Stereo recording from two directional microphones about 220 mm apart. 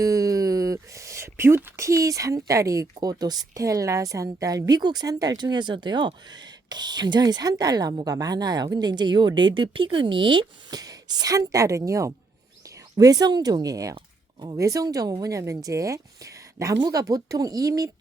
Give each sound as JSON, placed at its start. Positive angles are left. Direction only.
{"t": 0.0, "sound": "speech", "side_deg": -15}